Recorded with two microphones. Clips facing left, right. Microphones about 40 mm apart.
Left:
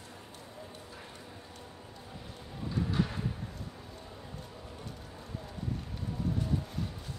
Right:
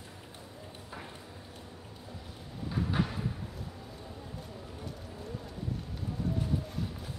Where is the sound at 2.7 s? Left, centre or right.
Centre.